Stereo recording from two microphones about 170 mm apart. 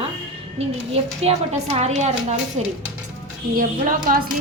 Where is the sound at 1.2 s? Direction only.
40° right (ahead or behind).